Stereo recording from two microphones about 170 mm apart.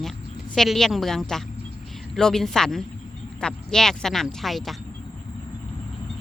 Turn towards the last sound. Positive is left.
turn(degrees=0)  # may be behind; listen again after turning